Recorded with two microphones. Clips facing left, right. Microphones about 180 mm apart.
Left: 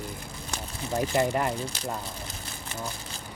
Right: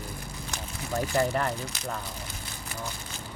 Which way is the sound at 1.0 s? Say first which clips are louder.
Left 1 dB; 20° left (ahead or behind).